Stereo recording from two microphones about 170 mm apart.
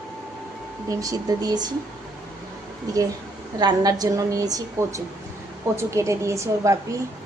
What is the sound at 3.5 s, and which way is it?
A woman's voice, 20° right (ahead or behind).